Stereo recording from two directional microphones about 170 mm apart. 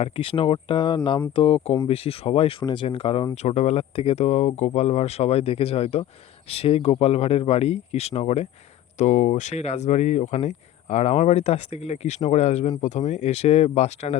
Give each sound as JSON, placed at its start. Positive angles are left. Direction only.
{"t": 0.0, "sound": "speech", "side_deg": 30}